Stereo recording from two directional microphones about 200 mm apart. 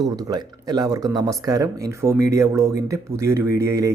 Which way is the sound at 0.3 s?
20° right (ahead or behind).